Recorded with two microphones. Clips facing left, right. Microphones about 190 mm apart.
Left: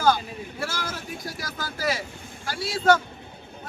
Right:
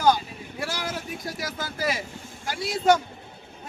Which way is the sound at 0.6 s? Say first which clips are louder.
Right 2 dB; 15° right (ahead or behind).